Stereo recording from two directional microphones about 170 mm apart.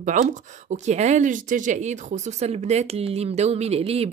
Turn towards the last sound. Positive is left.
turn(degrees=-35)  # may be behind; listen again after turning